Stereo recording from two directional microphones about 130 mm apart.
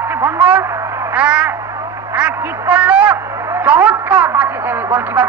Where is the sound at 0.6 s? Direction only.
20° right (ahead or behind).